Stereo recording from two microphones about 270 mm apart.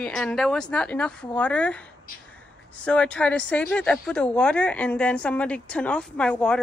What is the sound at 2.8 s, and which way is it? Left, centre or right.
Speech, centre.